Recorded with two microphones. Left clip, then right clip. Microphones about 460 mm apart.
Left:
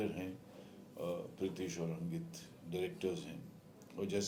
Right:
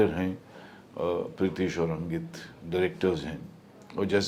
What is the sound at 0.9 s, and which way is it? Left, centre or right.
A man's voice, right.